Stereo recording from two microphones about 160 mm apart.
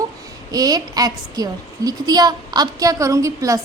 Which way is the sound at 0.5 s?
25° right (ahead or behind).